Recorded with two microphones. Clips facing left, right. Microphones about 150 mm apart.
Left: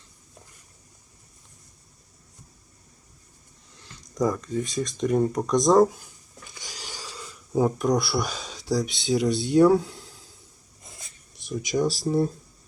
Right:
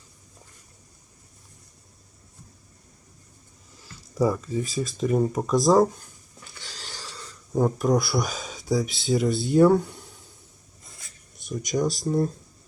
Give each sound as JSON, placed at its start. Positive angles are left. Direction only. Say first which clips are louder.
{"t": 3.8, "sound": "speech", "louder": "right 2 dB", "side_deg": -5}
{"t": 6.5, "sound": "a sound", "louder": "left 1 dB", "side_deg": 15}
{"t": 11.3, "sound": "speech", "louder": "left 1 dB", "side_deg": 0}